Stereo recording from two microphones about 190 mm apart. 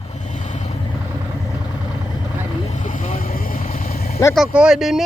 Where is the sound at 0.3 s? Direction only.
40° left (ahead or behind).